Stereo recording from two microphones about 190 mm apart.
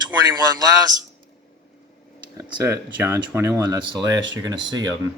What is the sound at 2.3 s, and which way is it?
Speech, 15° right (ahead or behind).